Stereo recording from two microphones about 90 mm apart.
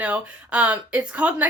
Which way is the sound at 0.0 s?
15° right (ahead or behind).